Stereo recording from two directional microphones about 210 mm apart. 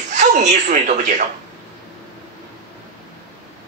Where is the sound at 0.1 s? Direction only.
35° right (ahead or behind).